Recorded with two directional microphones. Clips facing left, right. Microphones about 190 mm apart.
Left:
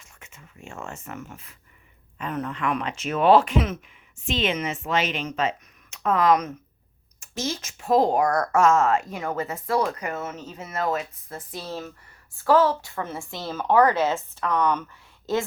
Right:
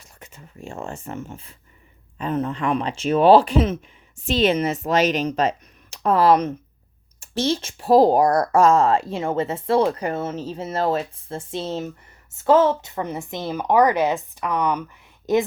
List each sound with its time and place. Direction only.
0.0 s a woman's voice: 35° right (ahead or behind); by 15.4 s 20° right (ahead or behind)